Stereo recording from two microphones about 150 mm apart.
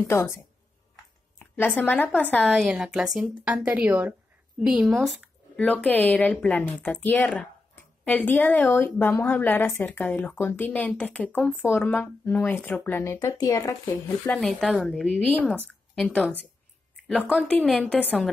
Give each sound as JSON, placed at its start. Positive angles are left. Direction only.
{"t": 0.1, "sound": "speech", "side_deg": 20}
{"t": 1.4, "sound": "a sound", "side_deg": 10}
{"t": 1.8, "sound": "speech", "side_deg": 10}
{"t": 14.2, "sound": "a woman's voice", "side_deg": 0}
{"t": 16.9, "sound": "a sound", "side_deg": 5}
{"t": 17.5, "sound": "speech", "side_deg": 5}